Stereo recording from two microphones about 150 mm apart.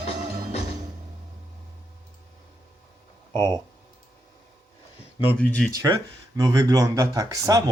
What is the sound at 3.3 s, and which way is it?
Speech, 20° left (ahead or behind).